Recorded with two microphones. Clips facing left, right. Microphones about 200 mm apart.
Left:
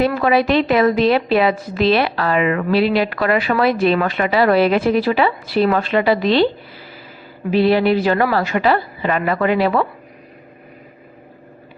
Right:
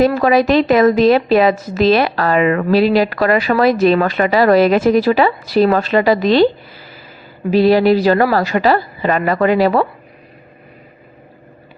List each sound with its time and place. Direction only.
0.0 s a woman's voice: 40° right (ahead or behind)
7.5 s a woman's voice: 40° right (ahead or behind)